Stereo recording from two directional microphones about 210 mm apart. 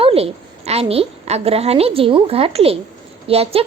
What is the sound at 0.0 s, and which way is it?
A woman's voice, 30° right (ahead or behind).